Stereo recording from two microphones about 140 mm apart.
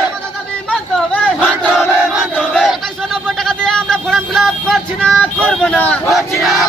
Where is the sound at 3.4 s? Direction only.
5° left (ahead or behind).